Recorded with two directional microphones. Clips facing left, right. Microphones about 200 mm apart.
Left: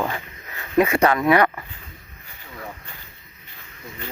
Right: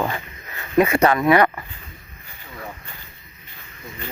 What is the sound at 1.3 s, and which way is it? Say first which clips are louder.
Speech: right 1 dB; 25° right (ahead or behind).